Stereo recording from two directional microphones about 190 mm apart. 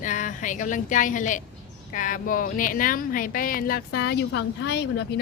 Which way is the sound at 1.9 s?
45° left (ahead or behind).